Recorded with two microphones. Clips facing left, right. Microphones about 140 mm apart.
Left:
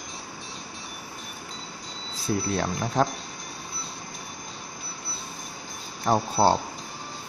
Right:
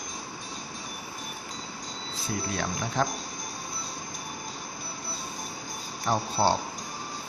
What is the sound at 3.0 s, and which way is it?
Speech, 40° left (ahead or behind).